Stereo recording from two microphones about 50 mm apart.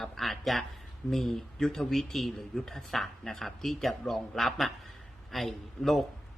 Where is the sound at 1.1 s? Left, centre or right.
Centre.